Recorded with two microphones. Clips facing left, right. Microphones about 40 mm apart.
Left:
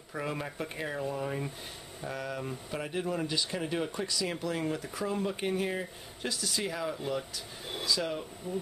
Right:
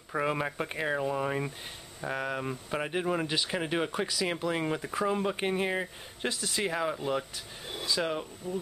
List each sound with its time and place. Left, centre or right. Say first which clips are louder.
0.1 s speech: right 6 dB; right